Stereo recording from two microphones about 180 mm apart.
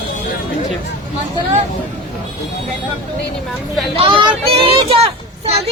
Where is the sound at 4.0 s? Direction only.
30° right (ahead or behind).